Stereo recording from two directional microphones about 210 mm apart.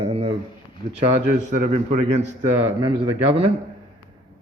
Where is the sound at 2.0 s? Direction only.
35° right (ahead or behind).